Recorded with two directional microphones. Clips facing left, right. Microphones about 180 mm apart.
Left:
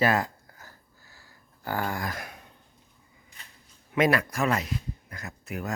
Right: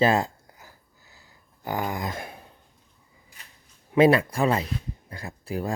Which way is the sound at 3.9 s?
30° right (ahead or behind).